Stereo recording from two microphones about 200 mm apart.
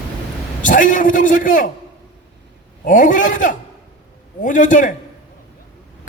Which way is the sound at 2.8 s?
40° left (ahead or behind).